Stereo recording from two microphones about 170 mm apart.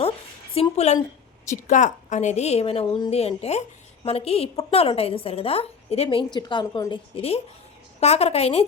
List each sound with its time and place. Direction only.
0.5 s a woman's voice: 35° left (ahead or behind)
1.5 s a woman's voice: 50° left (ahead or behind)